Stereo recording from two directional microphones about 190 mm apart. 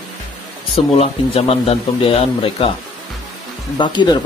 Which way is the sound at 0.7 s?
30° left (ahead or behind).